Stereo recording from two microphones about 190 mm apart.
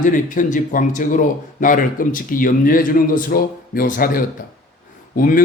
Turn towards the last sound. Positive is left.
turn(degrees=45)  # may be behind; listen again after turning